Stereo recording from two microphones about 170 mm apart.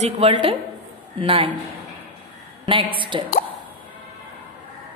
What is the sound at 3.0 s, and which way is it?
Speech, 30° right (ahead or behind).